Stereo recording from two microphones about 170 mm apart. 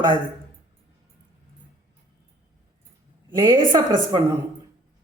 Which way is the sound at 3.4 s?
25° right (ahead or behind).